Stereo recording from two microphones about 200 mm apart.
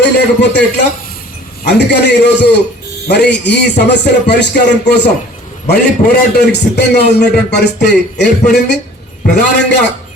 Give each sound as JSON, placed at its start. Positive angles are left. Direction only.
{"t": 0.0, "sound": "speech", "side_deg": 60}
{"t": 1.6, "sound": "a man's voice", "side_deg": 60}